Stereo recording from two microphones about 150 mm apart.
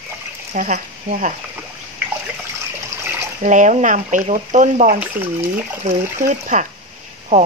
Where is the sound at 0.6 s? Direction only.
65° right (ahead or behind).